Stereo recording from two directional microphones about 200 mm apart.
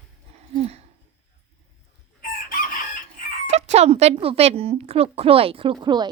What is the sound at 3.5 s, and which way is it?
Speech, 35° right (ahead or behind).